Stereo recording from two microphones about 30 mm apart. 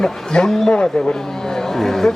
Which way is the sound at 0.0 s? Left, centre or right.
Left.